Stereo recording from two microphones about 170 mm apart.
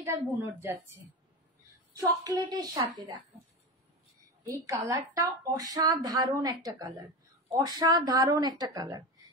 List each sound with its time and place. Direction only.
0.0 s a woman's voice: 15° right (ahead or behind)
2.5 s a woman's voice: 25° right (ahead or behind)
4.5 s a woman's voice: 20° right (ahead or behind)